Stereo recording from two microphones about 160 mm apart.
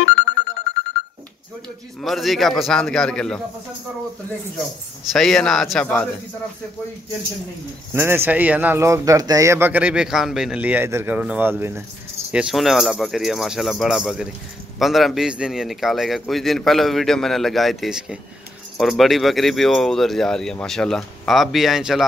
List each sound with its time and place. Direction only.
0.0 s music: 90° left
2.0 s a man's voice: centre (ahead or behind)
5.1 s a man's voice: 5° left (ahead or behind)
7.9 s a man's voice: 15° right (ahead or behind)